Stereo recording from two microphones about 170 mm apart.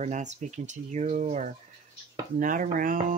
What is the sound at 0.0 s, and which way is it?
Speech, 45° right (ahead or behind).